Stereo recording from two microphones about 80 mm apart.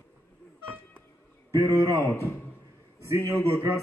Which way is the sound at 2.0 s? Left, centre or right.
Left.